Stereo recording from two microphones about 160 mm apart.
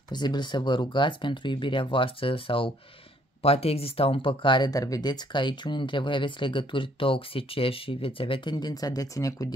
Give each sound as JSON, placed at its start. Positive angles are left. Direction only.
{"t": 0.1, "sound": "speech", "side_deg": 25}